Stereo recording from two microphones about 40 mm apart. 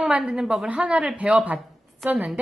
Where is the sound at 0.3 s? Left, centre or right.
Right.